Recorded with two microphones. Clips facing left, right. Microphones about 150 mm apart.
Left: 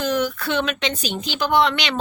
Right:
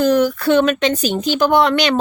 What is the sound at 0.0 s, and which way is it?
Speech, 40° right (ahead or behind).